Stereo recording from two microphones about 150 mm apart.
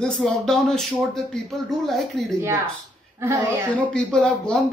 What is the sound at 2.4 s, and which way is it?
Speech, 20° right (ahead or behind).